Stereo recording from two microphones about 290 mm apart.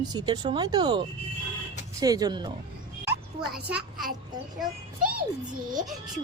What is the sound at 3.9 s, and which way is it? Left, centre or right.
Speech, centre.